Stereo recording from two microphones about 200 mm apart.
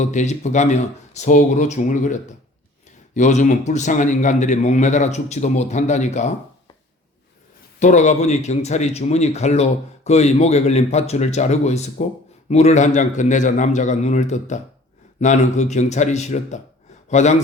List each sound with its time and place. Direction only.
0.0 s speech: 35° left (ahead or behind)
3.2 s speech: 35° left (ahead or behind)
7.8 s a man's voice: 35° left (ahead or behind)